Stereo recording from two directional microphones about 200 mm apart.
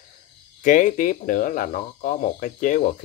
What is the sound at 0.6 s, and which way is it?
Speech, 40° left (ahead or behind).